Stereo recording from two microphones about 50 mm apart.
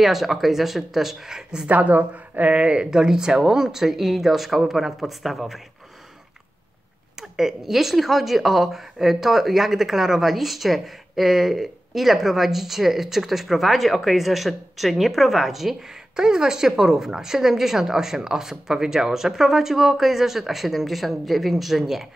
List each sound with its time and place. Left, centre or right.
0.0 s speech: centre
1.7 s speech: right; by 5.6 s centre
7.2 s speech: centre